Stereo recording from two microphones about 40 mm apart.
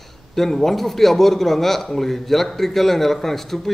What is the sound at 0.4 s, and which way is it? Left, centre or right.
A man's voice, centre.